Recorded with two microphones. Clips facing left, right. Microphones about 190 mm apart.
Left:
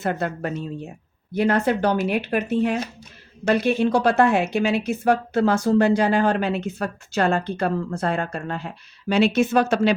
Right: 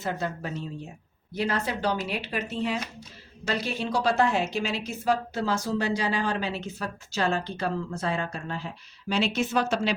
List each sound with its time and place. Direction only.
0.0 s a woman's voice: 60° left (ahead or behind)